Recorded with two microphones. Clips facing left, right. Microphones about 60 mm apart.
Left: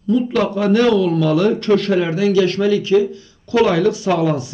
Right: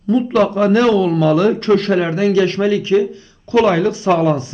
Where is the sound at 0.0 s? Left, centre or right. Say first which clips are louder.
Right 3 dB; right.